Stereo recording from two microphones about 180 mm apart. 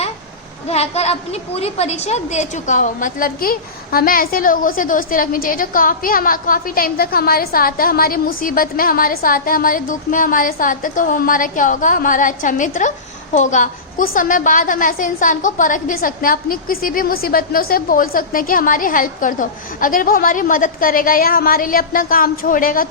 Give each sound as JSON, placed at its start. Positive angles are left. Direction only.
{"t": 0.7, "sound": "a woman's voice", "side_deg": 35}